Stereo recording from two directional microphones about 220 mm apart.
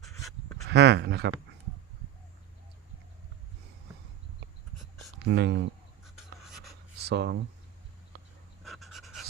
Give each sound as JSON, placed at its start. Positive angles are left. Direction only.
{"t": 0.0, "sound": "a sound", "side_deg": 0}
{"t": 0.7, "sound": "speech", "side_deg": -50}
{"t": 5.2, "sound": "speech", "side_deg": -50}
{"t": 6.1, "sound": "writing", "side_deg": 0}
{"t": 7.0, "sound": "speech", "side_deg": -50}
{"t": 8.6, "sound": "pant", "side_deg": 0}